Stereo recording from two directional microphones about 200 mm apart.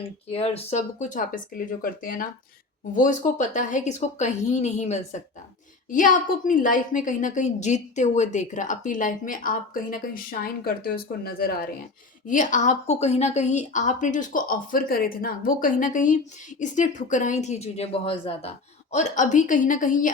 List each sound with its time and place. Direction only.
0.3 s a woman's voice: 30° left (ahead or behind)